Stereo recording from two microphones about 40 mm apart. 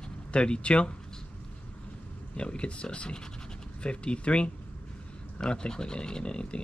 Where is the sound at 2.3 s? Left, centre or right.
Left.